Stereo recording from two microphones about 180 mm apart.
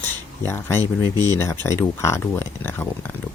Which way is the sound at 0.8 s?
20° right (ahead or behind).